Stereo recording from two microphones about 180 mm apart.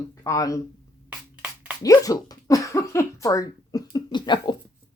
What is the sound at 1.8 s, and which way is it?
A woman's voice, 20° left (ahead or behind).